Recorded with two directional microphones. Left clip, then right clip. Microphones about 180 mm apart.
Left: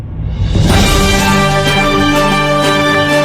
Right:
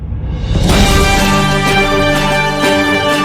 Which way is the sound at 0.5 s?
Centre (ahead or behind).